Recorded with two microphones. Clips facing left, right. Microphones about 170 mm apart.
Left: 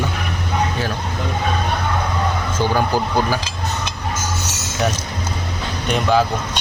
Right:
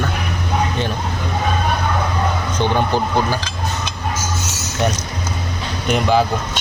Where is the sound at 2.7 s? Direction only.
5° left (ahead or behind).